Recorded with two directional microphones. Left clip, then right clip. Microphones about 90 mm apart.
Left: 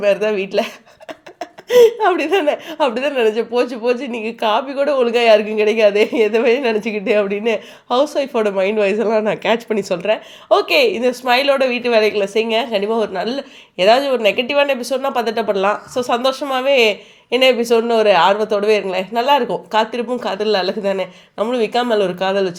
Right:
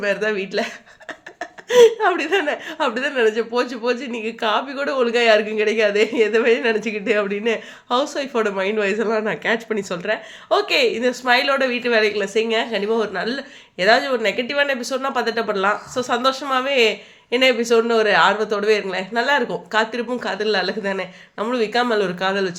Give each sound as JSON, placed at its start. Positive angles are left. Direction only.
{"t": 0.0, "sound": "a woman's voice", "side_deg": 40}
{"t": 9.2, "sound": "speech", "side_deg": 65}
{"t": 10.5, "sound": "a woman's voice", "side_deg": 45}